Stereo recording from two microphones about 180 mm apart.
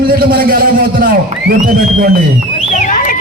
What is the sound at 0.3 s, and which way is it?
A man's voice, 55° right (ahead or behind).